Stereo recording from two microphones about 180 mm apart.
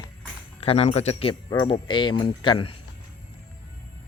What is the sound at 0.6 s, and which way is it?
Speech, 35° left (ahead or behind).